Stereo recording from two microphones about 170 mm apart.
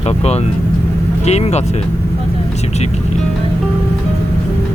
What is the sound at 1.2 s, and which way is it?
Speech, 40° left (ahead or behind).